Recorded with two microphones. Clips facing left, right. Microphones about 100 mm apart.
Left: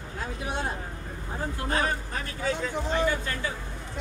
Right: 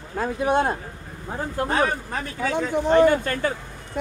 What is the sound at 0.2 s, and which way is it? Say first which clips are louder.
Speech: right 11 dB; 50° right (ahead or behind).